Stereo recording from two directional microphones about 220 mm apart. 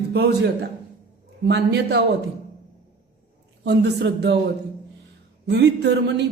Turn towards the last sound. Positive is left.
turn(degrees=-50)  # may be behind; listen again after turning